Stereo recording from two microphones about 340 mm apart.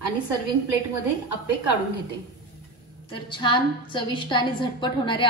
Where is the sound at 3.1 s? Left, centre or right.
Centre.